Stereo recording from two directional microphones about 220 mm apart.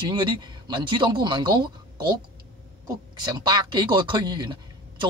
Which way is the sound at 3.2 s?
20° right (ahead or behind).